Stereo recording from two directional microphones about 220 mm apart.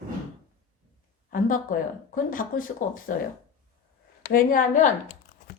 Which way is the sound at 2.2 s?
40° left (ahead or behind).